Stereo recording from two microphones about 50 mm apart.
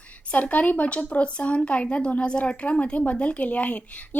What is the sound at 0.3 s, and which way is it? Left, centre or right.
Speech, left.